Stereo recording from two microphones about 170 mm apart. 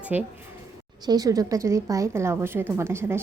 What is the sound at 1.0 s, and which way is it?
A woman's voice, 20° right (ahead or behind).